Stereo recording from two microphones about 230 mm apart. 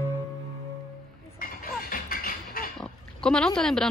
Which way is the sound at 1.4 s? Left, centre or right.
Left.